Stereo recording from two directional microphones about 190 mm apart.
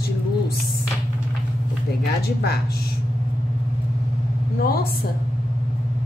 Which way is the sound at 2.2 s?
55° left (ahead or behind).